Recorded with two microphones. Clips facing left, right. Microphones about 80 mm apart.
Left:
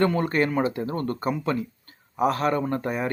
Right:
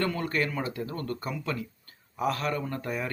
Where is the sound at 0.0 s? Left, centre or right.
Left.